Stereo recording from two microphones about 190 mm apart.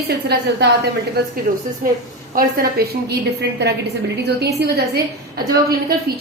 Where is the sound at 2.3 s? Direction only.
55° right (ahead or behind).